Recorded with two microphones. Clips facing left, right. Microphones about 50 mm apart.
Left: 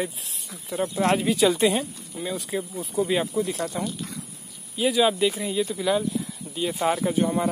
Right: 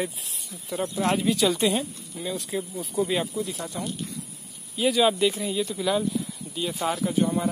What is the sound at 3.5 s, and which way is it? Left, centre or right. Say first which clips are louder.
Speech: left 5 dB; left.